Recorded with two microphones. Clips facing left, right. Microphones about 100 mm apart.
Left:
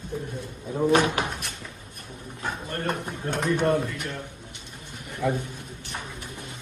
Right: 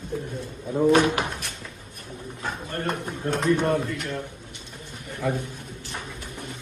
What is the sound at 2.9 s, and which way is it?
Speech, 15° left (ahead or behind).